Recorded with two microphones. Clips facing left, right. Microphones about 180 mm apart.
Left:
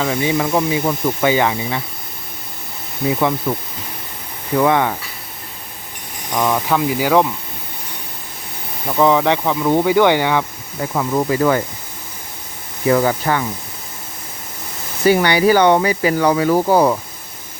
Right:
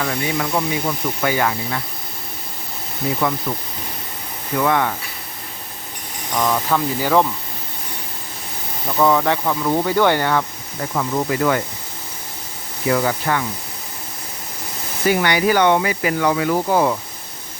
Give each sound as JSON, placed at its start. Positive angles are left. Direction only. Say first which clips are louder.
{"t": 0.0, "sound": "speech", "louder": "left 4 dB", "side_deg": 20}
{"t": 3.1, "sound": "speech", "louder": "left 3 dB", "side_deg": 25}
{"t": 4.5, "sound": "speech", "louder": "left 4 dB", "side_deg": 25}
{"t": 6.3, "sound": "speech", "louder": "left 2 dB", "side_deg": 10}
{"t": 9.0, "sound": "speech", "louder": "left 2 dB", "side_deg": 15}
{"t": 10.9, "sound": "speech", "louder": "left 3 dB", "side_deg": 25}
{"t": 12.9, "sound": "speech", "louder": "left 3 dB", "side_deg": 30}
{"t": 15.1, "sound": "speech", "louder": "left 3 dB", "side_deg": 30}